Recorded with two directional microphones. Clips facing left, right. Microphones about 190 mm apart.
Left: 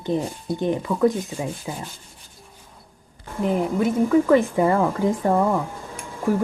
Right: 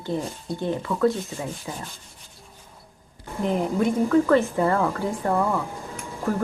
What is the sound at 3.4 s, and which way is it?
Speech, 5° left (ahead or behind).